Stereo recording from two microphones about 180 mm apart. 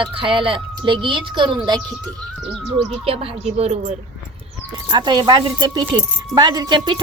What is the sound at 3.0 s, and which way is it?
Speech, 30° right (ahead or behind).